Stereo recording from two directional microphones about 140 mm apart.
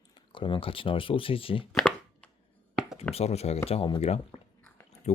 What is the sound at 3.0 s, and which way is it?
Speech, 50° left (ahead or behind).